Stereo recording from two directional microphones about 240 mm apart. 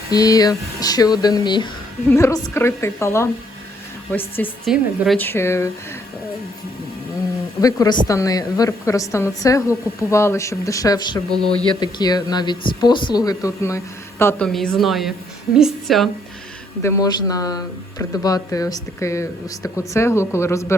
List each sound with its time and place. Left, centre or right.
0.1 s a woman's voice: centre
4.4 s a woman's voice: centre
7.6 s a woman's voice: centre
16.8 s a woman's voice: centre